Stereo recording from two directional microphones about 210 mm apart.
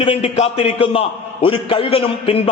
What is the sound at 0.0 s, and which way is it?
A man's voice, 25° left (ahead or behind).